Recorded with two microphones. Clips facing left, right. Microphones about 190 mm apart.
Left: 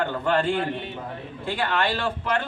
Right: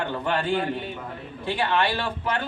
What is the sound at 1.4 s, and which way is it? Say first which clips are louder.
Speech: right 1 dB; 15° right (ahead or behind).